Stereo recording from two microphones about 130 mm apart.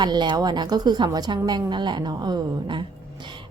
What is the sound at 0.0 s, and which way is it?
A woman's voice, 35° right (ahead or behind).